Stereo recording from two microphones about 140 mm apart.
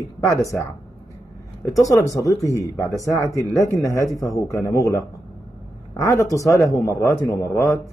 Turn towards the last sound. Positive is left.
turn(degrees=20)  # may be behind; listen again after turning